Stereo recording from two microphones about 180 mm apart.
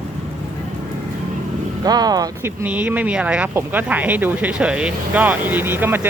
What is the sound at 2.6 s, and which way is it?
Speech, 10° right (ahead or behind).